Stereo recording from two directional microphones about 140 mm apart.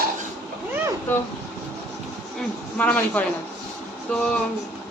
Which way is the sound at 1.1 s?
10° left (ahead or behind).